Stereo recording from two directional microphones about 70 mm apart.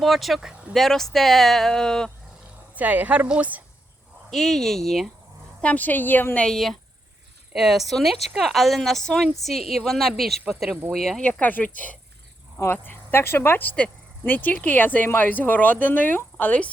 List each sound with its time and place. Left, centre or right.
0.0 s speech: centre
2.7 s speech: right
4.3 s speech: centre
5.6 s speech: left
6.4 s a woman's voice: centre
11.2 s speech: left